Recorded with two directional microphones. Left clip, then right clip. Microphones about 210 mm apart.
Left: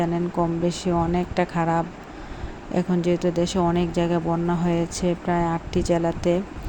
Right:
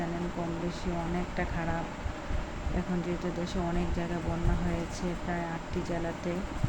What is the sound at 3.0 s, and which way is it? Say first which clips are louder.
A woman's voice: left 12 dB; 40° left (ahead or behind).